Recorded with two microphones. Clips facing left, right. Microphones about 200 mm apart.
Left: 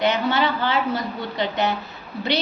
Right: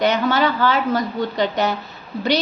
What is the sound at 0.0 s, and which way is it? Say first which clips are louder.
A woman's voice: right 3 dB; 40° right (ahead or behind).